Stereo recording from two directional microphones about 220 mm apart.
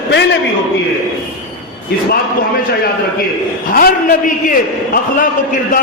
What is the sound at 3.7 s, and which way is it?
Speech, 40° left (ahead or behind).